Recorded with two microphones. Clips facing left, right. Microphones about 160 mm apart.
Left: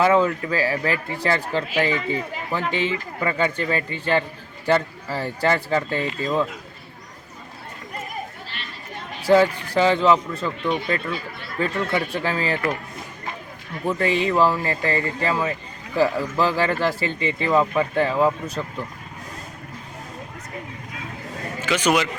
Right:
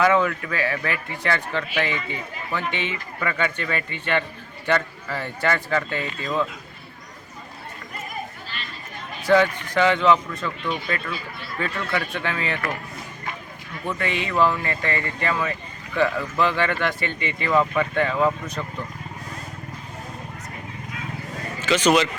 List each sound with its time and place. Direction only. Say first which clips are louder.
0.0 s speech: left 2 dB; 30° left (ahead or behind)
9.2 s speech: left 2 dB; 30° left (ahead or behind)
13.8 s speech: left 6 dB; 35° left (ahead or behind)
21.6 s a man's voice: right 2 dB; 10° left (ahead or behind)